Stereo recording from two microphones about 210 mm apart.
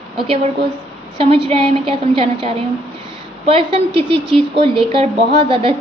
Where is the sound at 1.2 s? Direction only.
25° right (ahead or behind).